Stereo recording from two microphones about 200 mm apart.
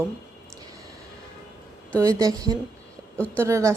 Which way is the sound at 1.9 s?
15° right (ahead or behind).